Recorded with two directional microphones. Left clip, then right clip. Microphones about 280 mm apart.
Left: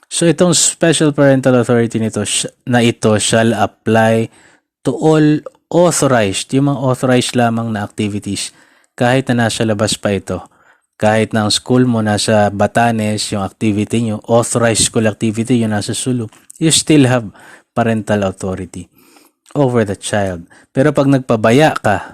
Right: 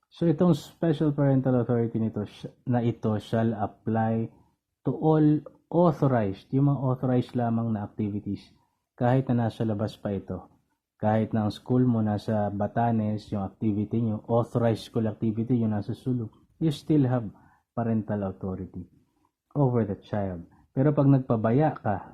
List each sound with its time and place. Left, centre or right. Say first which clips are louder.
0.2 s speech: left 13 dB; left
5.8 s speech: left 12 dB; left
7.1 s speech: left 15 dB; left